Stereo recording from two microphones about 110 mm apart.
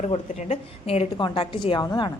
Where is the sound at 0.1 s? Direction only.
70° left (ahead or behind).